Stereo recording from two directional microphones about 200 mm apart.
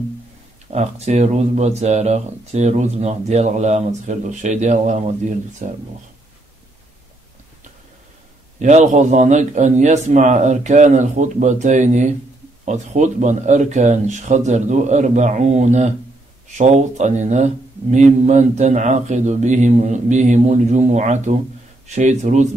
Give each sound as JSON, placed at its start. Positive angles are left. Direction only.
{"t": 0.7, "sound": "speech", "side_deg": -35}
{"t": 8.5, "sound": "speech", "side_deg": -35}